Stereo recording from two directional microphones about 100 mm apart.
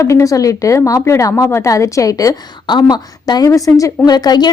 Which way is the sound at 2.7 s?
45° left (ahead or behind).